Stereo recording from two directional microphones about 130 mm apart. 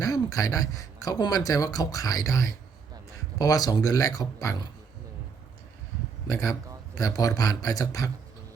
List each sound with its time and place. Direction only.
0.0 s speech: 25° left (ahead or behind)
6.2 s speech: 25° left (ahead or behind)